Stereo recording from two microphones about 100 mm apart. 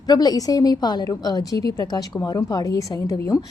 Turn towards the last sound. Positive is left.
turn(degrees=35)  # may be behind; listen again after turning